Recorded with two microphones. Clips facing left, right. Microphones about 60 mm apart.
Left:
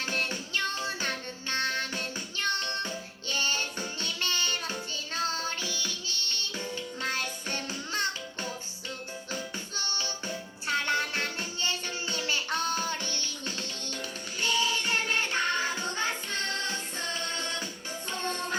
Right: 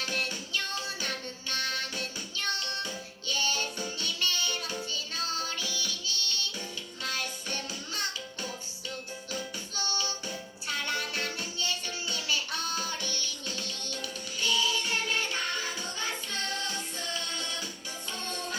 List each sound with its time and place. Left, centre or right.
0.0 s music: left